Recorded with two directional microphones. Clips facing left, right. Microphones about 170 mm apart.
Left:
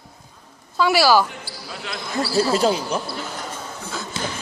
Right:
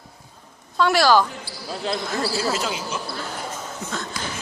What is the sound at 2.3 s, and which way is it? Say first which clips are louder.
Speech: left 6 dB; 35° left (ahead or behind).